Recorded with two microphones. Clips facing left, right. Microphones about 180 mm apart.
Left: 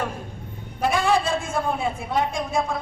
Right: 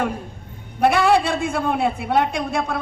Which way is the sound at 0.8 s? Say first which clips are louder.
Right 5 dB; 65° right (ahead or behind).